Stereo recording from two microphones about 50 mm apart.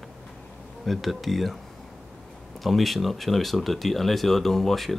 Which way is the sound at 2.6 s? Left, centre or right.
Centre.